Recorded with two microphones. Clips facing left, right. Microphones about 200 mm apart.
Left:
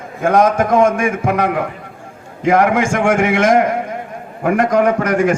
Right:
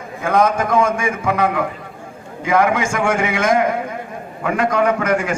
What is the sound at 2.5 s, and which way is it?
A man's voice, 50° left (ahead or behind).